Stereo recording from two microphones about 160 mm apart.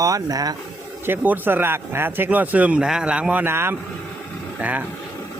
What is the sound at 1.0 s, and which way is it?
Speech, 10° right (ahead or behind).